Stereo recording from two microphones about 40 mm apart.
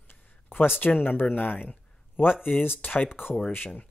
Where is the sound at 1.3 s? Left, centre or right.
Left.